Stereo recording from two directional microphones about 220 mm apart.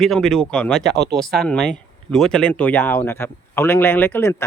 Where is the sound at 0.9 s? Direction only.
50° right (ahead or behind).